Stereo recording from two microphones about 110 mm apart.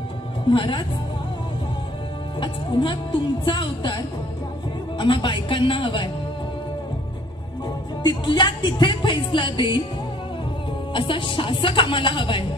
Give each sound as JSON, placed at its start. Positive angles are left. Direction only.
{"t": 0.5, "sound": "speech", "side_deg": 50}
{"t": 2.4, "sound": "speech", "side_deg": 45}
{"t": 8.0, "sound": "speech", "side_deg": 45}
{"t": 10.9, "sound": "speech", "side_deg": 50}